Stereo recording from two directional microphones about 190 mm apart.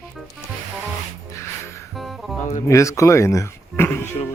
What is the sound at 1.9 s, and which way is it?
Music, centre (ahead or behind).